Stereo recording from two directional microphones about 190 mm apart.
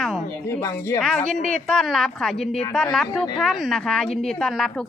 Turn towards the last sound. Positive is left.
turn(degrees=0)  # may be behind; listen again after turning